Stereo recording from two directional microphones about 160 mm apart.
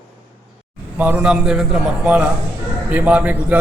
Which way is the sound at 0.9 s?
10° right (ahead or behind).